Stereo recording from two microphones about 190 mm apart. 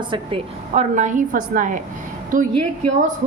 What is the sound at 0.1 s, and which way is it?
A woman's voice, 30° right (ahead or behind).